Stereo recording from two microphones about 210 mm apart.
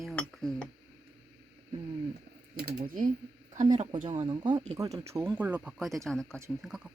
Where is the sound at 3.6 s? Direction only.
35° right (ahead or behind).